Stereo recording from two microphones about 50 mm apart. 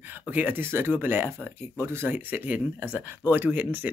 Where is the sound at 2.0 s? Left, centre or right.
Right.